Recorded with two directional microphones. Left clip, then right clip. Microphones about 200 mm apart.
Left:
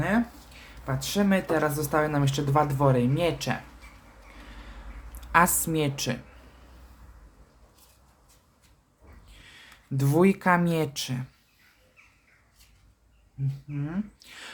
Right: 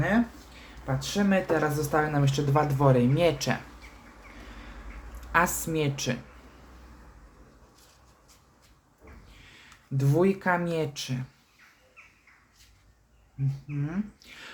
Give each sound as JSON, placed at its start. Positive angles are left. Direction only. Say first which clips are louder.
{"t": 0.9, "sound": "speech", "louder": "left 1 dB", "side_deg": 25}
{"t": 5.3, "sound": "a woman's voice", "louder": "left 3 dB", "side_deg": 25}
{"t": 9.4, "sound": "speech", "louder": "left 4 dB", "side_deg": 20}
{"t": 13.8, "sound": "a sound", "louder": "even", "side_deg": 15}